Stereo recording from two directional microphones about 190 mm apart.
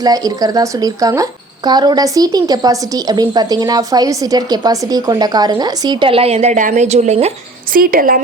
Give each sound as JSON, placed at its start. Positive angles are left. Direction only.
{"t": 0.0, "sound": "speech", "side_deg": -20}
{"t": 7.7, "sound": "a woman's voice", "side_deg": -50}